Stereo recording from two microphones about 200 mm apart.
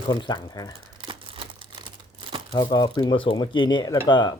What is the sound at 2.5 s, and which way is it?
Speech, 20° left (ahead or behind).